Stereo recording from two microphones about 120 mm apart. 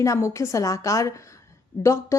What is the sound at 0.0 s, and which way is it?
A woman's voice, 25° left (ahead or behind).